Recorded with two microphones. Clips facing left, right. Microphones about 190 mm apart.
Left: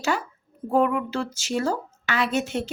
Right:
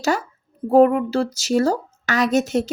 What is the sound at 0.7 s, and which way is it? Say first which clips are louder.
A woman's voice: right 8 dB; 40° right (ahead or behind).